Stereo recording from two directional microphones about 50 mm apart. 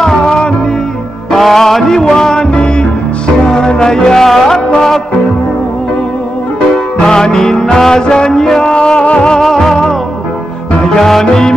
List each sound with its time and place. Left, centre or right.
0.0 s music: centre
6.7 s music: centre